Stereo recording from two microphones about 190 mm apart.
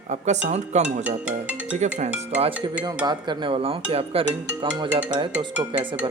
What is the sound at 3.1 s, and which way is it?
Speech, 25° right (ahead or behind).